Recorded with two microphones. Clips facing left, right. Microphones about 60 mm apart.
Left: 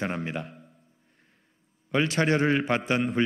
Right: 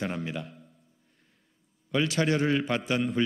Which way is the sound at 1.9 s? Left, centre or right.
Left.